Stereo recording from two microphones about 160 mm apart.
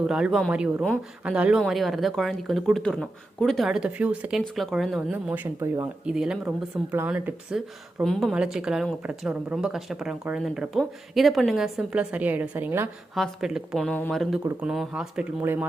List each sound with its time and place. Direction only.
0.1 s speech: centre (ahead or behind)
6.1 s speech: 5° right (ahead or behind)
13.1 s speech: centre (ahead or behind)